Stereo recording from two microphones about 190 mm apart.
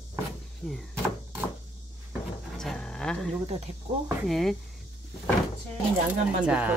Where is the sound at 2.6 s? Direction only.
5° left (ahead or behind).